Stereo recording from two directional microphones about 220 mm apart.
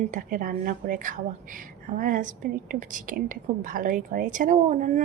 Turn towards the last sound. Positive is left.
turn(degrees=-35)  # may be behind; listen again after turning